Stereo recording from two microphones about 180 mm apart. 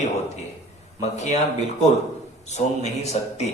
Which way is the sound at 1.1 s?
40° left (ahead or behind).